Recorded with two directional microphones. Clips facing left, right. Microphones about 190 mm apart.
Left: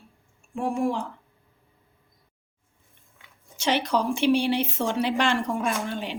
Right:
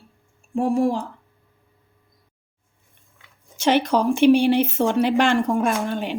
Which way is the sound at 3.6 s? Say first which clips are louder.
Right 5 dB; 50° right (ahead or behind).